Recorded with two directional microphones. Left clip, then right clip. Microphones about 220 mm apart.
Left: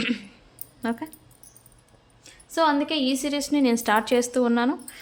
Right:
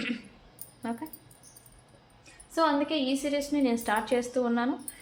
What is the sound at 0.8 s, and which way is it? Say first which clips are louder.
Speech: left 7 dB; 40° left (ahead or behind).